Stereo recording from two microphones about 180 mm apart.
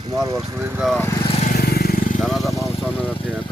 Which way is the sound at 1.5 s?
55° left (ahead or behind).